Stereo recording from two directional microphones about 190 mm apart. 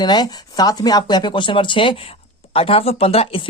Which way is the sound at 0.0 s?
20° left (ahead or behind).